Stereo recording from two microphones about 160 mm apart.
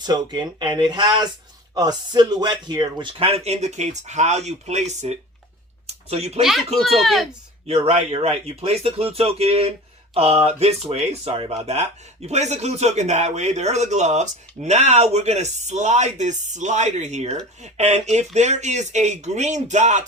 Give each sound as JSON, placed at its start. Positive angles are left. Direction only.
{"t": 0.0, "sound": "speech", "side_deg": -25}
{"t": 6.4, "sound": "speech", "side_deg": 0}
{"t": 7.9, "sound": "speech", "side_deg": -40}